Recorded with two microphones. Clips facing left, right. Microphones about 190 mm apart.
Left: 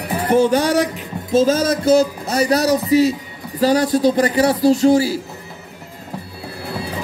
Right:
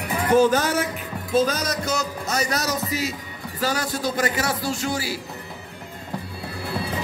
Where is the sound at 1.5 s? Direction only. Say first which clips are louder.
Left 11 dB; 30° left (ahead or behind).